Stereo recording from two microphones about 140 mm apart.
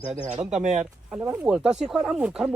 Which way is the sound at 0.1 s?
60° right (ahead or behind).